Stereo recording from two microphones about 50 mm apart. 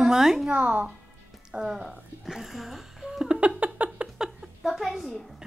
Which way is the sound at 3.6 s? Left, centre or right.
Right.